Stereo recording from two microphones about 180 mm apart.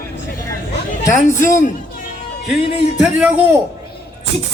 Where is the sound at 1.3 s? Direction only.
15° left (ahead or behind).